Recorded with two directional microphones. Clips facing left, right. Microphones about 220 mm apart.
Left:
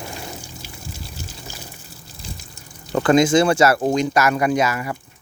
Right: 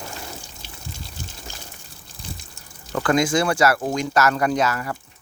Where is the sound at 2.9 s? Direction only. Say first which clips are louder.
Left 5 dB; 25° left (ahead or behind).